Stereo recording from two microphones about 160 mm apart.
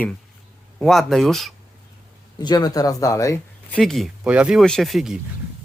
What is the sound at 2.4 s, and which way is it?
Speech, 25° left (ahead or behind).